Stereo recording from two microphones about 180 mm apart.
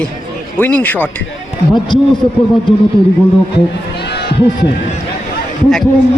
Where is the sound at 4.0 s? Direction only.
65° left (ahead or behind).